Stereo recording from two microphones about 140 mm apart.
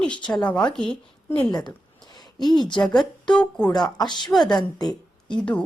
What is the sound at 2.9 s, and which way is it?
Speech, 5° left (ahead or behind).